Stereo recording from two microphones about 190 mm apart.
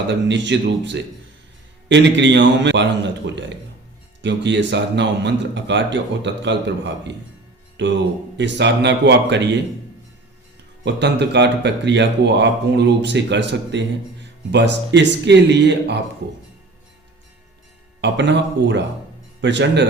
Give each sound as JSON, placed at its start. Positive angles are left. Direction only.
{"t": 0.1, "sound": "speech", "side_deg": -70}
{"t": 10.8, "sound": "a man's voice", "side_deg": -65}
{"t": 18.0, "sound": "speech", "side_deg": -65}